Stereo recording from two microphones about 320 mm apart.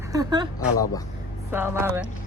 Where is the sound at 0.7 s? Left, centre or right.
Centre.